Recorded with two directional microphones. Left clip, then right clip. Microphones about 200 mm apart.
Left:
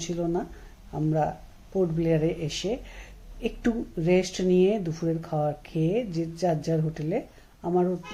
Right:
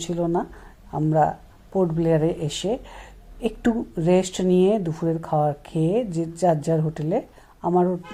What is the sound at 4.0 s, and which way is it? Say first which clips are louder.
Speech: right 3 dB; 5° right (ahead or behind).